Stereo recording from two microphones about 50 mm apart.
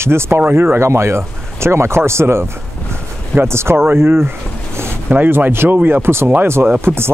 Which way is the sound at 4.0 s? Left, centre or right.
Right.